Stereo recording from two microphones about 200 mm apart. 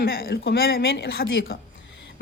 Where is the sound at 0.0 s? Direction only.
50° left (ahead or behind).